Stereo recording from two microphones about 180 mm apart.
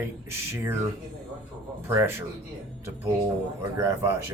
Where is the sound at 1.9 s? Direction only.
15° right (ahead or behind).